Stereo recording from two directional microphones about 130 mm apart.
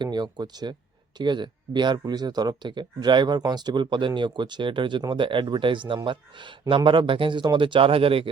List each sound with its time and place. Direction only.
0.0 s speech: 35° right (ahead or behind)